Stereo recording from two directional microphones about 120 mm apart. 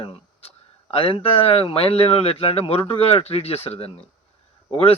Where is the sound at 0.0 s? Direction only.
55° left (ahead or behind).